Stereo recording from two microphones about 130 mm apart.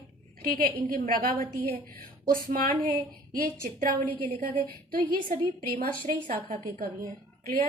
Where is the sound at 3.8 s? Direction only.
90° right.